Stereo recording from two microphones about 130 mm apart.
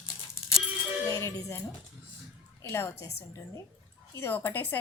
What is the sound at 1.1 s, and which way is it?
Speech, 20° left (ahead or behind).